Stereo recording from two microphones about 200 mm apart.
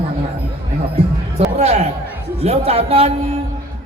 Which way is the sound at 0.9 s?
30° right (ahead or behind).